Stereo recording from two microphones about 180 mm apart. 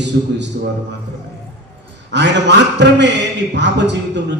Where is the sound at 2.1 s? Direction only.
75° right (ahead or behind).